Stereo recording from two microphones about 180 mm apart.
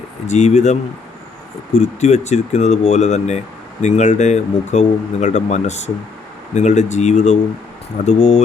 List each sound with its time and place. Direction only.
0.3 s speech: 40° left (ahead or behind)